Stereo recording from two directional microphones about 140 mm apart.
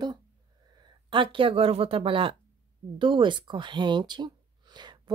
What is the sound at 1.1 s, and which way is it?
Speech, 35° right (ahead or behind).